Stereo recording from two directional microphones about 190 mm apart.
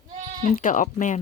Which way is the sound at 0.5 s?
45° left (ahead or behind).